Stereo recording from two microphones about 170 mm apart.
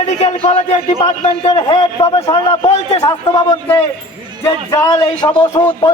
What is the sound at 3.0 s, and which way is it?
A man's voice, 20° left (ahead or behind).